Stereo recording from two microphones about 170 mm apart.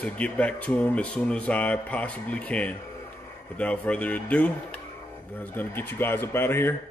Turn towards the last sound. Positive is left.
turn(degrees=15)  # may be behind; listen again after turning